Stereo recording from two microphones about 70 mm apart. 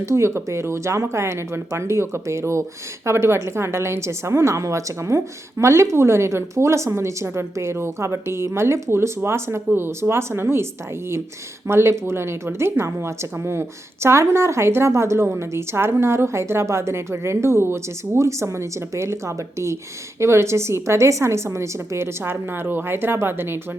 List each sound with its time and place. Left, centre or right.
0.0 s speech: right
11.7 s speech: right